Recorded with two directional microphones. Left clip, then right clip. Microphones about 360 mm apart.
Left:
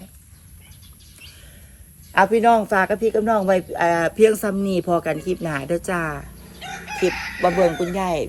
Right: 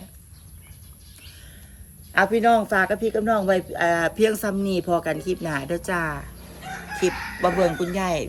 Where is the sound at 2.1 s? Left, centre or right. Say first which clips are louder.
Left 3 dB; centre.